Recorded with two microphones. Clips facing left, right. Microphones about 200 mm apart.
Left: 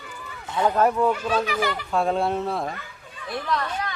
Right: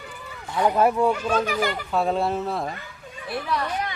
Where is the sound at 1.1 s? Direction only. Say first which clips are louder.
Right 1 dB; 45° right (ahead or behind).